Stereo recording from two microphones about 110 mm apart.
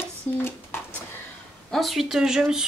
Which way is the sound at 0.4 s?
20° left (ahead or behind).